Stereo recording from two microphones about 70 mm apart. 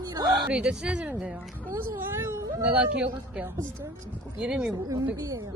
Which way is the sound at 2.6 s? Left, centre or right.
Centre.